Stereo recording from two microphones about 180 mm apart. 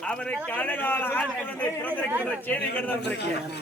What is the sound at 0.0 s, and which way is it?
A man's voice, 5° left (ahead or behind).